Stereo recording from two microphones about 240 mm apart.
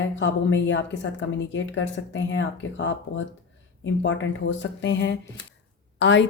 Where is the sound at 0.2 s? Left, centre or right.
Left.